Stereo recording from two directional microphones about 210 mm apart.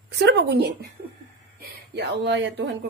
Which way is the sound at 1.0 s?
35° right (ahead or behind).